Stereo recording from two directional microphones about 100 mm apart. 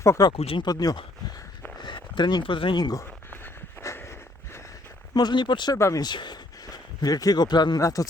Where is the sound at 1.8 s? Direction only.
50° left (ahead or behind).